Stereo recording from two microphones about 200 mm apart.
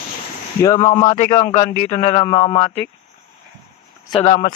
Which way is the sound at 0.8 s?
25° left (ahead or behind).